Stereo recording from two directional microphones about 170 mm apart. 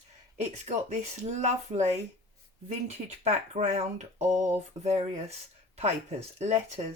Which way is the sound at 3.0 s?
40° right (ahead or behind).